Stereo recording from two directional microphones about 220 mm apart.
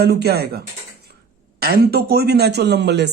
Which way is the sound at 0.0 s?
45° right (ahead or behind).